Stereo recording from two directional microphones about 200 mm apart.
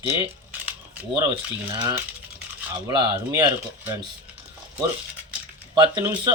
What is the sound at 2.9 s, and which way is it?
Speech, 20° right (ahead or behind).